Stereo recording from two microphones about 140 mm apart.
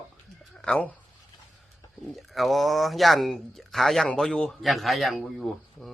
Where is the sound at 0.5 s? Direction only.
5° left (ahead or behind).